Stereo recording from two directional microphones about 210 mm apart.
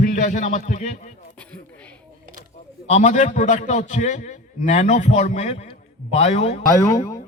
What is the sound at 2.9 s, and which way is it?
A man's voice, 35° left (ahead or behind).